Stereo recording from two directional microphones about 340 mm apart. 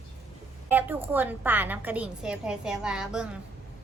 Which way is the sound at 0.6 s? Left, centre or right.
Centre.